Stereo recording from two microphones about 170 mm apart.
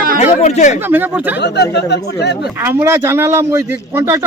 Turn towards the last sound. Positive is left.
turn(degrees=-15)  # may be behind; listen again after turning